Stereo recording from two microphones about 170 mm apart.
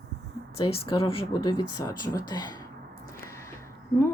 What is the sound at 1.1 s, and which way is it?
Speech, 30° left (ahead or behind).